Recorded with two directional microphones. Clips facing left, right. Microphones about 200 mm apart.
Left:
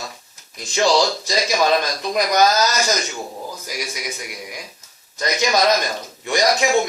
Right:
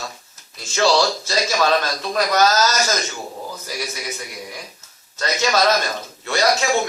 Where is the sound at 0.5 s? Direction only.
15° left (ahead or behind).